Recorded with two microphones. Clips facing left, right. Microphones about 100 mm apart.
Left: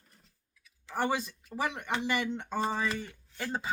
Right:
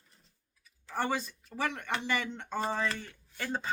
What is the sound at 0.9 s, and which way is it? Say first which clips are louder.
Speech: left 2 dB; 15° left (ahead or behind).